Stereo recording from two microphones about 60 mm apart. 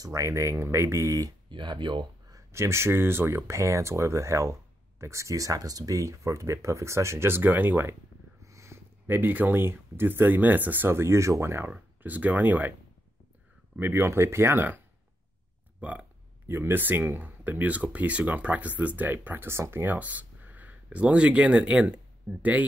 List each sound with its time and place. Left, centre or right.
0.0 s speech: right
2.5 s speech: right
8.4 s speech: right
11.0 s speech: right
12.0 s speech: right
13.7 s speech: right
15.8 s speech: right
16.4 s speech: right